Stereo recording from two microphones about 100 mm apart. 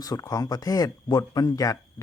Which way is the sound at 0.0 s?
40° left (ahead or behind).